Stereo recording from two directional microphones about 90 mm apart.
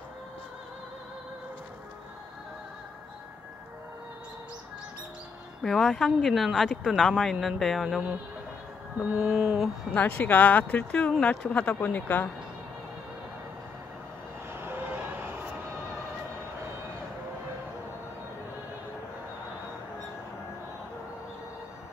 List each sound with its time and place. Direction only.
5.6 s speech: 5° left (ahead or behind)
9.2 s a sound: 10° right (ahead or behind)
9.9 s speech: 20° left (ahead or behind)
14.5 s vehicle: 20° right (ahead or behind)